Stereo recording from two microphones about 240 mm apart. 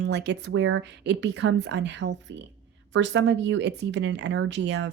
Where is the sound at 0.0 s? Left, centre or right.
Right.